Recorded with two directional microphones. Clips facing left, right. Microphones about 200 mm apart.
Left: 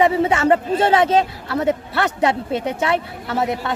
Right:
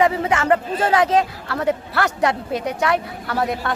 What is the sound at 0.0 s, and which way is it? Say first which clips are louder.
Speech: left 3 dB; 25° left (ahead or behind).